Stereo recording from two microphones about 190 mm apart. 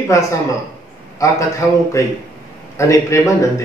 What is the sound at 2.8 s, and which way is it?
Speech, 15° left (ahead or behind).